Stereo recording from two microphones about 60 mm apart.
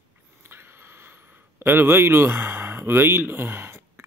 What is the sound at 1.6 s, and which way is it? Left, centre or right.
Speech, right.